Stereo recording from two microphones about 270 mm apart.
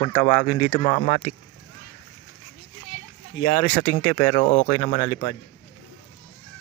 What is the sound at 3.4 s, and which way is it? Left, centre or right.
Speech, left.